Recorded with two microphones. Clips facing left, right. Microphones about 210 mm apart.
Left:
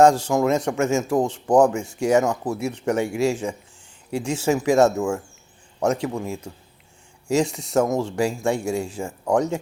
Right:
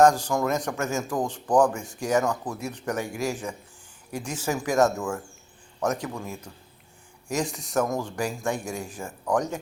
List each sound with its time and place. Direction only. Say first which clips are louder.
0.0 s speech: left 4 dB; 25° left (ahead or behind)